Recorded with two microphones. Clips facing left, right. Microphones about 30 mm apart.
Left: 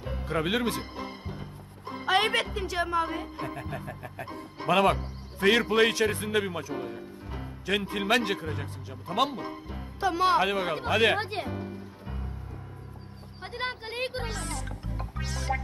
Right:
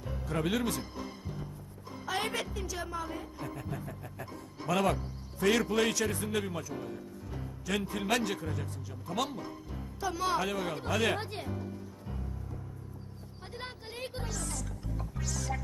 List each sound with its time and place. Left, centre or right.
0.0 s music: left
1.9 s speech: left
13.4 s music: left